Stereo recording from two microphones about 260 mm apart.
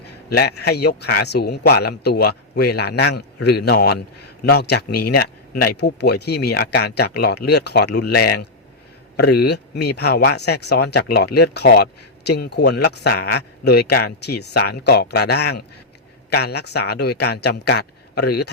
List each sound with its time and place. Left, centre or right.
0.0 s speech: left